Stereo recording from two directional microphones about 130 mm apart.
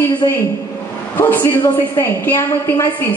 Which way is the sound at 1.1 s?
15° left (ahead or behind).